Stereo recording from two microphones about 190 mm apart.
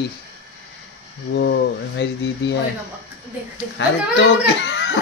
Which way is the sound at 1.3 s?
65° left (ahead or behind).